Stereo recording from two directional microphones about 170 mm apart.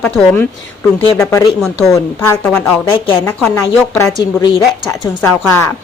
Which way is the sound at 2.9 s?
30° left (ahead or behind).